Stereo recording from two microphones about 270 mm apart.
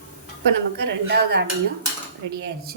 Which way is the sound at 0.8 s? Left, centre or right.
Right.